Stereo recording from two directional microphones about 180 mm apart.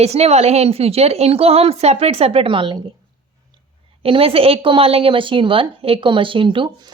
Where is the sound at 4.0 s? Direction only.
30° right (ahead or behind).